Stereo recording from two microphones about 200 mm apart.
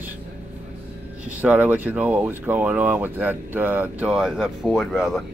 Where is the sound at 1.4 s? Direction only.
10° right (ahead or behind).